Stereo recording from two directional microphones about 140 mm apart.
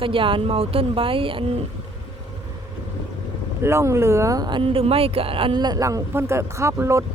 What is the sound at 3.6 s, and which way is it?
Speech, 20° right (ahead or behind).